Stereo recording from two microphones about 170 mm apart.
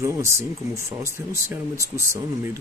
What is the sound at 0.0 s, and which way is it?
Speech, 15° right (ahead or behind).